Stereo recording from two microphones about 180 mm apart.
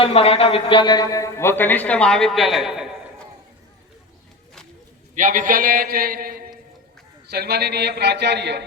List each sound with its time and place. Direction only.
0.0 s a man's voice: 35° left (ahead or behind); by 2.9 s centre (ahead or behind)
5.1 s a man's voice: 45° right (ahead or behind); by 8.6 s 70° right (ahead or behind)